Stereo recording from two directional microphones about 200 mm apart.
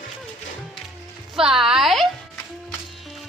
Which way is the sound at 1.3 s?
Centre (ahead or behind).